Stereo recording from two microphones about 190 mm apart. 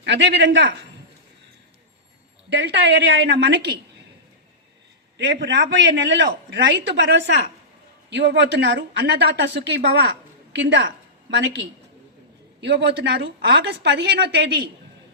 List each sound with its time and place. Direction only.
0.0 s a man's voice: 65° right (ahead or behind)
2.5 s speech: 65° right (ahead or behind)
5.1 s a man's voice: 70° right (ahead or behind)